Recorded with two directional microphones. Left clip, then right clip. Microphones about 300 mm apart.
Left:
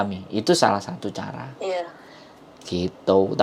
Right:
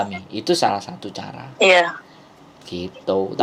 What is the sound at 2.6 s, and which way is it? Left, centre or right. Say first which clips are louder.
Speech: left 2 dB; left.